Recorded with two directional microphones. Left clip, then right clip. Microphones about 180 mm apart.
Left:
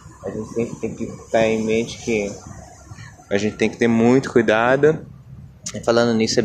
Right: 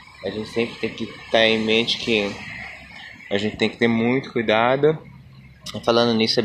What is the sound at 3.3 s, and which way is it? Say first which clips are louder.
Speech: left 2 dB; 20° left (ahead or behind).